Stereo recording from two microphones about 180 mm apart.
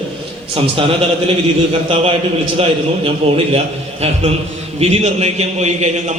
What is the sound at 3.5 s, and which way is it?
A man's voice, 35° right (ahead or behind).